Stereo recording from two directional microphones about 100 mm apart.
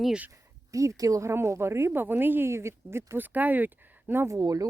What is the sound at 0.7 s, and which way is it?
A woman's voice, 35° right (ahead or behind).